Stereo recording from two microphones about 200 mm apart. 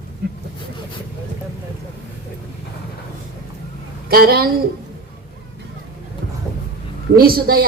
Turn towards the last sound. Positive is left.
turn(degrees=-50)  # may be behind; listen again after turning